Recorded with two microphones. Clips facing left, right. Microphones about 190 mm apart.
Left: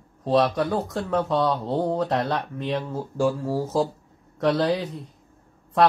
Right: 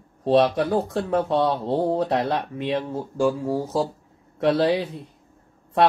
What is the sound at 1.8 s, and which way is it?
Speech, 5° right (ahead or behind).